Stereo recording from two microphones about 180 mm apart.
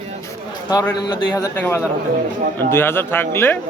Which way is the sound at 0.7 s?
20° left (ahead or behind).